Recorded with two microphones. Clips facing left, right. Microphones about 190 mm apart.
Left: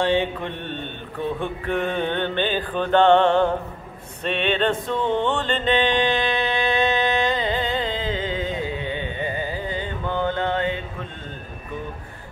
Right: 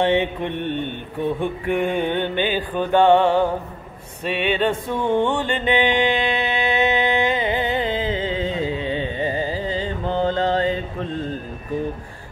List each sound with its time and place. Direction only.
0.0 s mantra: 20° right (ahead or behind)
4.2 s music: 10° right (ahead or behind)
8.2 s carnatic music: 30° right (ahead or behind)